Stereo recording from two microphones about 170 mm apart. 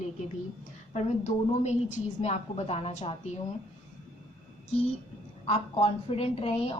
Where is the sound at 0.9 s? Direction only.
40° left (ahead or behind).